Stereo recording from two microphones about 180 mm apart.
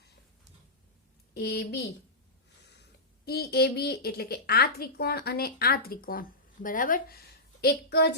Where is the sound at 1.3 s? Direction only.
60° left (ahead or behind).